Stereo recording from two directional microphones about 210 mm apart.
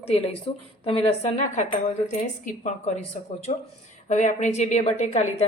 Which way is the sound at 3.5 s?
30° left (ahead or behind).